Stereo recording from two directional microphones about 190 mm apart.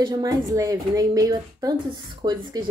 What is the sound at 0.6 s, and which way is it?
Speech, 20° right (ahead or behind).